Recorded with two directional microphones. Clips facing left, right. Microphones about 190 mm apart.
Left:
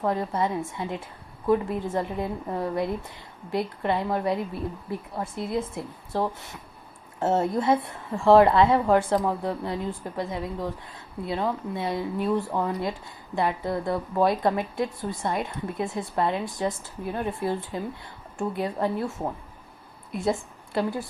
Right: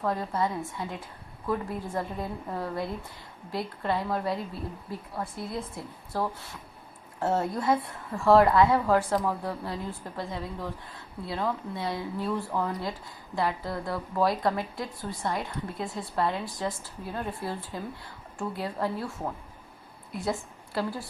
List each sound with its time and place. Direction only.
0.0 s a woman's voice: 20° left (ahead or behind)
20.7 s a woman's voice: 20° left (ahead or behind)